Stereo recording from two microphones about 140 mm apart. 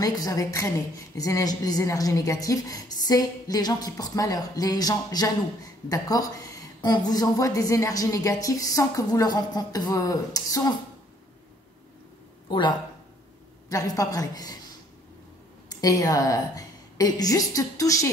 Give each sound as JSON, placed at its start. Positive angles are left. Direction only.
{"t": 0.0, "sound": "a woman's voice", "side_deg": 25}
{"t": 12.4, "sound": "a woman's voice", "side_deg": 35}
{"t": 15.7, "sound": "a woman's voice", "side_deg": 25}